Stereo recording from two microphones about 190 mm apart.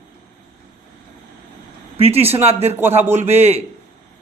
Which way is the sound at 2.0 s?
30° right (ahead or behind).